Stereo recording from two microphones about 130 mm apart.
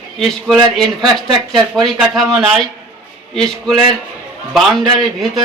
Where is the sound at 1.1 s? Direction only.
Centre (ahead or behind).